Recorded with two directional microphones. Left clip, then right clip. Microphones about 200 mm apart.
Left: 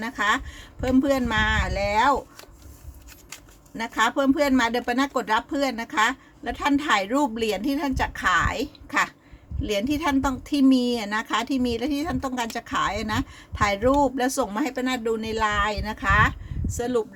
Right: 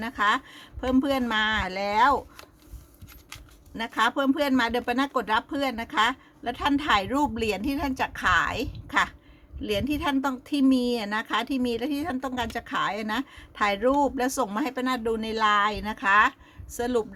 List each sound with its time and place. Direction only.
0.0 s a woman's voice: 10° right (ahead or behind)
3.8 s a woman's voice: 5° right (ahead or behind)